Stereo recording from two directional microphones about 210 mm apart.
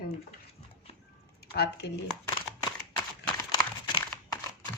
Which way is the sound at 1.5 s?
50° left (ahead or behind).